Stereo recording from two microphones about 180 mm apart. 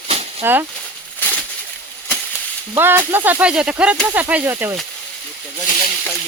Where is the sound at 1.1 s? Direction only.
10° left (ahead or behind).